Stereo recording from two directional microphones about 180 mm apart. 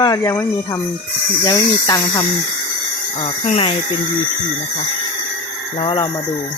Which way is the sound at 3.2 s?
35° left (ahead or behind).